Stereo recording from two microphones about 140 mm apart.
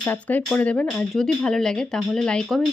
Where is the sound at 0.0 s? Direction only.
10° left (ahead or behind).